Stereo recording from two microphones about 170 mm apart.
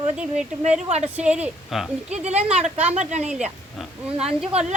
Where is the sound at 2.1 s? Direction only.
40° right (ahead or behind).